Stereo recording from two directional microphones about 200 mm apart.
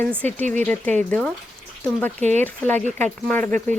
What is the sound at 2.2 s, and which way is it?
Speech, 35° right (ahead or behind).